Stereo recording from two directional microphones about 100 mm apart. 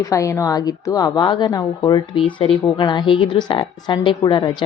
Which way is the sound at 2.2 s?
65° left (ahead or behind).